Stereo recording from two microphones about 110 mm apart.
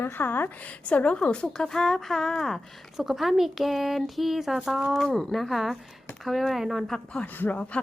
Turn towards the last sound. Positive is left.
turn(degrees=10)  # may be behind; listen again after turning